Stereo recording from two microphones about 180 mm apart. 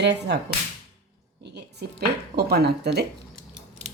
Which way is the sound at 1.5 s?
65° right (ahead or behind).